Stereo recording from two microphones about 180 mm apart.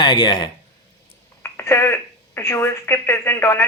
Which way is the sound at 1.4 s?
15° left (ahead or behind).